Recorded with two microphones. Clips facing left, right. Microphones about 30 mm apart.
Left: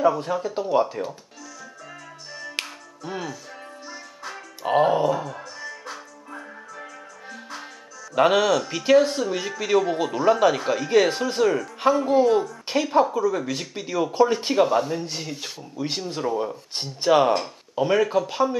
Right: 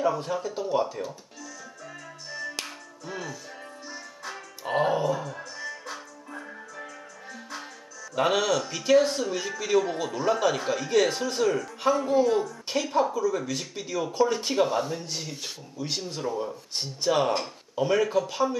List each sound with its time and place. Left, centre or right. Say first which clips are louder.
0.0 s speech: left 5 dB; centre
2.6 s music: left 5 dB; left
3.1 s speech: left 4 dB; centre
3.9 s music: left 1 dB; centre
8.1 s speech: left 5 dB; centre